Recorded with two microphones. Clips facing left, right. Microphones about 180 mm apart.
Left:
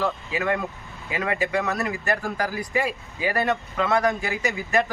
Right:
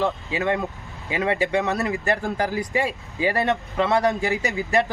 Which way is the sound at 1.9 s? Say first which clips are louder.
Right 2 dB; 30° right (ahead or behind).